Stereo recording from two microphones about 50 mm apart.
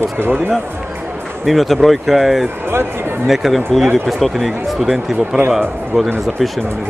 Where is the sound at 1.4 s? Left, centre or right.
Centre.